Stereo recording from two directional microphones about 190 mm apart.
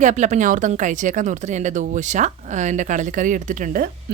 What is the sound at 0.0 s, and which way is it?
A woman's voice, 40° right (ahead or behind).